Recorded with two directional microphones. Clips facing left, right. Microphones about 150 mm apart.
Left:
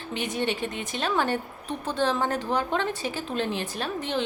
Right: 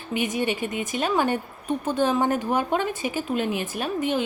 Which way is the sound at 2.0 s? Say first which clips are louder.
Right 2 dB; 15° right (ahead or behind).